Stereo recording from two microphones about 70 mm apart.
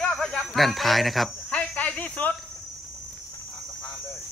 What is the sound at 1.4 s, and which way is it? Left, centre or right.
Snake, centre.